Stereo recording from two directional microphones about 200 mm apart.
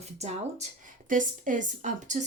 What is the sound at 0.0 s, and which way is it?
Speech, 35° right (ahead or behind).